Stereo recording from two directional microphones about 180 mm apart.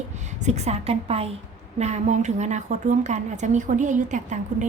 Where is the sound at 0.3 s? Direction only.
40° right (ahead or behind).